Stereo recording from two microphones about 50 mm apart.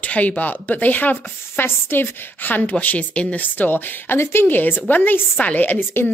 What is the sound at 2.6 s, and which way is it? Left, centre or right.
A woman's voice, left.